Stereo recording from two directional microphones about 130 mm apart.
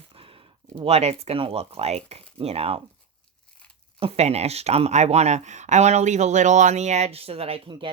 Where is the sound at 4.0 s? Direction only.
50° right (ahead or behind).